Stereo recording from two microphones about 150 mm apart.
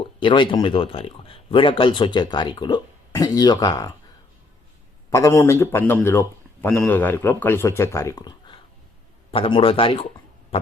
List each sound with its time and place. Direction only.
0.0 s speech: 35° left (ahead or behind)
5.1 s a man's voice: 15° left (ahead or behind); by 10.1 s 35° left (ahead or behind)
10.5 s pig: 40° left (ahead or behind)